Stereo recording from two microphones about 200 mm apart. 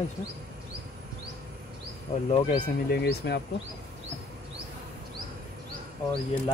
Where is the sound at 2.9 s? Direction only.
55° left (ahead or behind).